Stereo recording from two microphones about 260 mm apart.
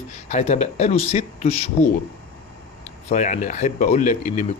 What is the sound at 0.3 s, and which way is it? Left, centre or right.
Speech, left.